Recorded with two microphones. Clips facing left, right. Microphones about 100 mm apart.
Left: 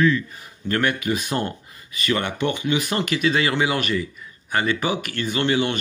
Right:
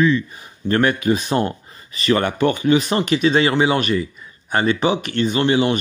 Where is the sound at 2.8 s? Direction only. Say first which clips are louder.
Right 5 dB; 25° right (ahead or behind).